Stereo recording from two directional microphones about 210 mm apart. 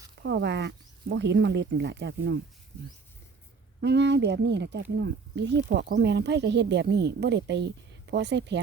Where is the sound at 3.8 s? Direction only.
55° right (ahead or behind).